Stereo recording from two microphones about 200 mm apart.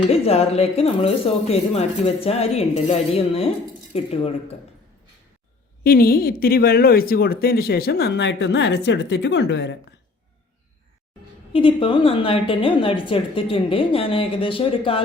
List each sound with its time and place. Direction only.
0.1 s speech: 30° left (ahead or behind)
5.8 s speech: 50° left (ahead or behind)
11.5 s a woman's voice: 25° left (ahead or behind)